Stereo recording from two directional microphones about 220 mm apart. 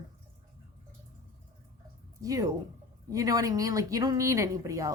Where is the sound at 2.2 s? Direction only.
15° right (ahead or behind).